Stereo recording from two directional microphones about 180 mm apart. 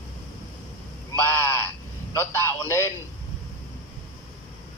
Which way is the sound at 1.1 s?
10° left (ahead or behind).